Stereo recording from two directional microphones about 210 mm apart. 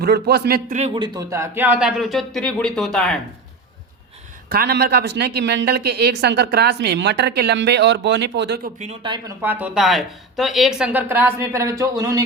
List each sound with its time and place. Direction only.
0.0 s speech: 50° right (ahead or behind); by 3.2 s centre (ahead or behind)
4.4 s speech: 45° right (ahead or behind)
8.8 s speech: 25° right (ahead or behind)
9.4 s speech: 10° right (ahead or behind)